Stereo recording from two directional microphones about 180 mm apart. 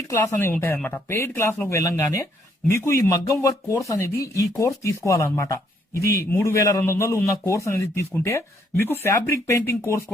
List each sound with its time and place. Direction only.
0.1 s a man's voice: 15° left (ahead or behind)